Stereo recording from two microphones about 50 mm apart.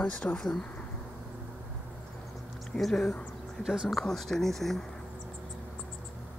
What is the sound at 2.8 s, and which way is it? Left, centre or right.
Speech, centre.